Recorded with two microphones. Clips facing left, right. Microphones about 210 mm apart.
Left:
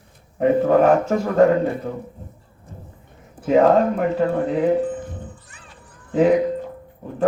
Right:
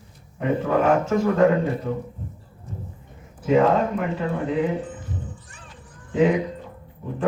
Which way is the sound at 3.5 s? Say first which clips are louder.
Left 3 dB; 40° left (ahead or behind).